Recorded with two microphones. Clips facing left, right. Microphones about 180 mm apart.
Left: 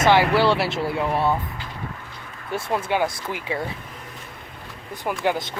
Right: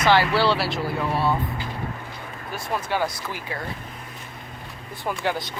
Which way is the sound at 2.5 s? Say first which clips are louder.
Left 3 dB; 25° left (ahead or behind).